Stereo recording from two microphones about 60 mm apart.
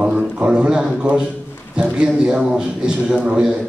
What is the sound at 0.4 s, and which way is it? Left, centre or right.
A man's voice, centre.